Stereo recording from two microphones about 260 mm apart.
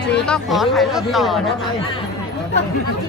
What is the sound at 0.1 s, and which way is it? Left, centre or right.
Speech, centre.